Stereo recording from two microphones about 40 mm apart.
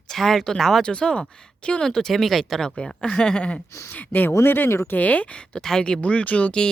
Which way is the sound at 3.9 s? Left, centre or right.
Left.